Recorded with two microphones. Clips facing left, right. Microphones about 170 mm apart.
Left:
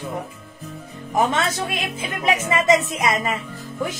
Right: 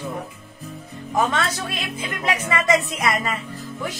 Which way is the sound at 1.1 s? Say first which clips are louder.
Left 2 dB; 20° left (ahead or behind).